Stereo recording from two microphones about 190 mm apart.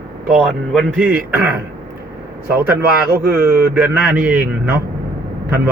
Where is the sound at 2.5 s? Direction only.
10° right (ahead or behind).